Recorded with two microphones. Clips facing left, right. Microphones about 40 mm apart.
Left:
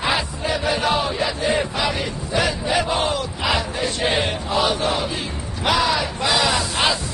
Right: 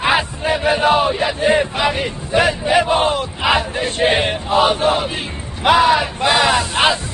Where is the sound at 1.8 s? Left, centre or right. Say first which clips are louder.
Right 4 dB; right.